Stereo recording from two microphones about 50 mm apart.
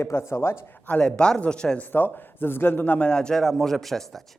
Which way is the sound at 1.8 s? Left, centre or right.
Left.